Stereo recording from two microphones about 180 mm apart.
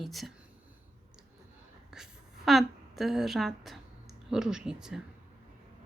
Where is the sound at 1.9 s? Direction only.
Centre (ahead or behind).